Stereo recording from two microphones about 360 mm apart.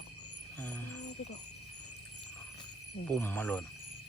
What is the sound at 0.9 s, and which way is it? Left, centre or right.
Jingle bell, left.